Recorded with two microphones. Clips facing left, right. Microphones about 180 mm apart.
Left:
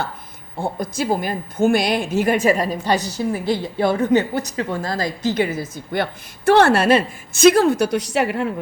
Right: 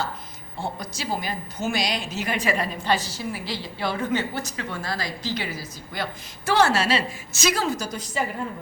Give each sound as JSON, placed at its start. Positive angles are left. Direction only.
{"t": 0.6, "sound": "a woman's voice", "side_deg": 50}
{"t": 4.1, "sound": "a woman's voice", "side_deg": 15}
{"t": 4.5, "sound": "a woman's voice", "side_deg": 40}